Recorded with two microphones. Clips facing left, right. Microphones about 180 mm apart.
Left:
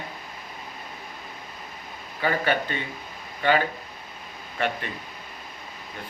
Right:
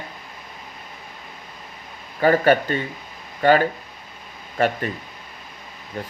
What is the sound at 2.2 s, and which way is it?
Speech, 45° right (ahead or behind).